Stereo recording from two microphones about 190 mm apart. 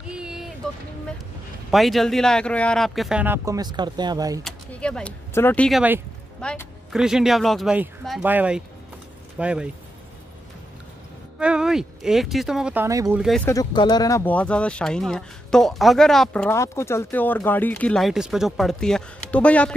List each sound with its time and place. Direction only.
0.1 s a sound: 5° right (ahead or behind)
1.7 s speech: centre (ahead or behind); by 4.4 s 20° right (ahead or behind)
4.4 s speech: 5° left (ahead or behind)
5.8 s speech: 10° right (ahead or behind)
6.4 s speech: centre (ahead or behind)
11.3 s speech: 5° right (ahead or behind)
12.8 s speech: 15° right (ahead or behind)
13.5 s speech: 20° left (ahead or behind)